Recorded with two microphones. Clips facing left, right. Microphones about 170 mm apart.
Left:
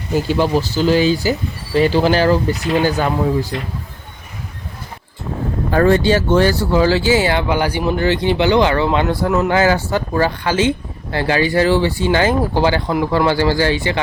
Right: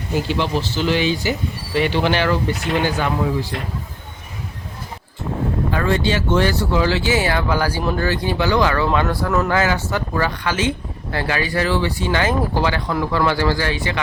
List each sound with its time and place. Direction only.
0.3 s speech: 40° left (ahead or behind)
5.7 s speech: 40° left (ahead or behind)